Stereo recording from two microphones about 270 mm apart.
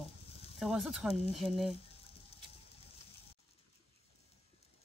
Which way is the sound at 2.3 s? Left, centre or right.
Left.